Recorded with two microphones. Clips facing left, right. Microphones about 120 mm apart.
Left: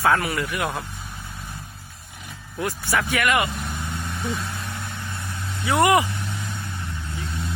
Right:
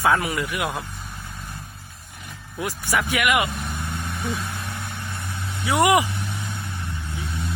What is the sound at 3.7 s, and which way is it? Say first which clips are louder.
Vehicle: even; 10° right (ahead or behind).